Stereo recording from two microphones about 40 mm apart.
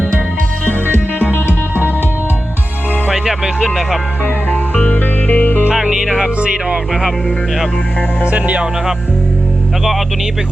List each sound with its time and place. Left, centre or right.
0.6 s music: left
3.1 s music: centre
4.5 s music: left
5.7 s music: centre
6.4 s speech: right
8.2 s music: right